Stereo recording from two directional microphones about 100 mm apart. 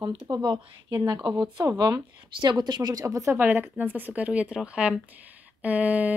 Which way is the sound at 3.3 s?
20° right (ahead or behind).